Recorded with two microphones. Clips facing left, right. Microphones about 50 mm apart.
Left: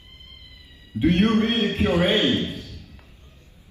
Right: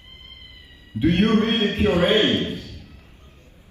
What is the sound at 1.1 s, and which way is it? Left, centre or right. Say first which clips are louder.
A man's voice: right 1 dB; right.